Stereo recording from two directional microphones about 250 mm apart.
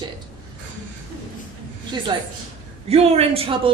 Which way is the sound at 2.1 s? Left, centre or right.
Centre.